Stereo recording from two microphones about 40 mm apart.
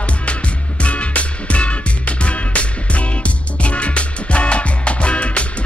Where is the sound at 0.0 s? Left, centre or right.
Left.